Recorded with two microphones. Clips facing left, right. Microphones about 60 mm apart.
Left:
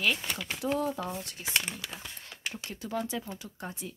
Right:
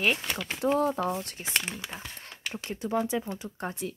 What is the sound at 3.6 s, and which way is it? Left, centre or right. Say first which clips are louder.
Speech: right 6 dB; right.